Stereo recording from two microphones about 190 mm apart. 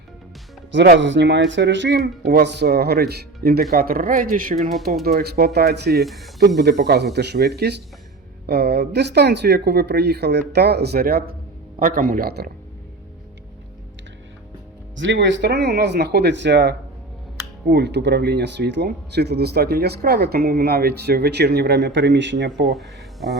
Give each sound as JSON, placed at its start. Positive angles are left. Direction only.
{"t": 0.7, "sound": "speech", "side_deg": -70}
{"t": 6.1, "sound": "speech", "side_deg": 0}
{"t": 6.6, "sound": "speech", "side_deg": -60}
{"t": 14.9, "sound": "speech", "side_deg": -75}
{"t": 22.6, "sound": "speech", "side_deg": 0}